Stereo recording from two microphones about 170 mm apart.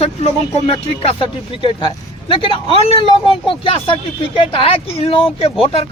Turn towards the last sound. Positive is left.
turn(degrees=35)  # may be behind; listen again after turning